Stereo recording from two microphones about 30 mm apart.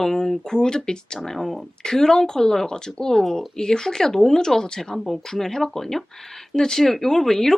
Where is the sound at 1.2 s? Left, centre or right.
Centre.